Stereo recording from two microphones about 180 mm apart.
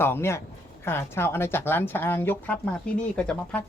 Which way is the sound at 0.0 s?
15° left (ahead or behind).